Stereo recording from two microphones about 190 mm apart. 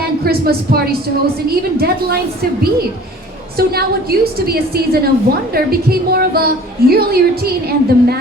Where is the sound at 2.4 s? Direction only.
55° right (ahead or behind).